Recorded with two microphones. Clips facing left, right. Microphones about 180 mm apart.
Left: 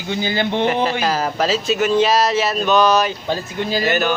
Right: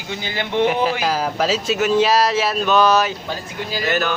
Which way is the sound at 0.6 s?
10° right (ahead or behind).